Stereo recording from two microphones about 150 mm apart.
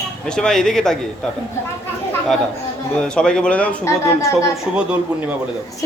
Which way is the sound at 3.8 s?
20° left (ahead or behind).